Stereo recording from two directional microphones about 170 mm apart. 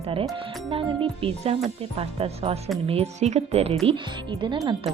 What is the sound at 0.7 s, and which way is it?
Speech, 30° right (ahead or behind).